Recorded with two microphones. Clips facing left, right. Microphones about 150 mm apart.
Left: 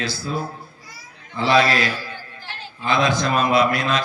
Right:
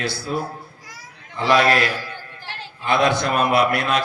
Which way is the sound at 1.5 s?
60° right (ahead or behind).